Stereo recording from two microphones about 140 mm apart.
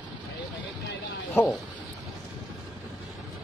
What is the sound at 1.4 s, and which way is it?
Speech, 15° left (ahead or behind).